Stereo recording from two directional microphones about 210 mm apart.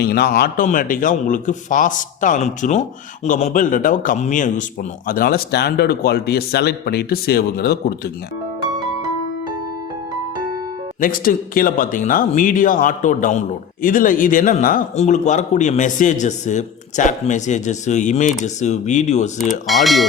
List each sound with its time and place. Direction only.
0.0 s a man's voice: 50° left (ahead or behind)
11.0 s a man's voice: 40° left (ahead or behind)
19.6 s speech: centre (ahead or behind)